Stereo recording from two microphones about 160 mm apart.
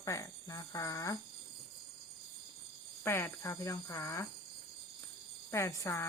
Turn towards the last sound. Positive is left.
turn(degrees=20)  # may be behind; listen again after turning